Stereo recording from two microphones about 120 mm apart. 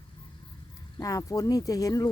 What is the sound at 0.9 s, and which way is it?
Speech, 30° left (ahead or behind).